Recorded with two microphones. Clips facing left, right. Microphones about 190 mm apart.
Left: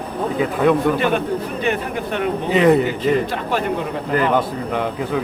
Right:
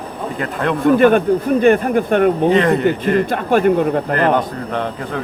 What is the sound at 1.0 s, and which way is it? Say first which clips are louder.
A man's voice: right 7 dB; 50° right (ahead or behind).